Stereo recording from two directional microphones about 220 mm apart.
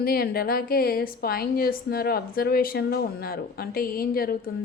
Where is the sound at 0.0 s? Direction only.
45° left (ahead or behind).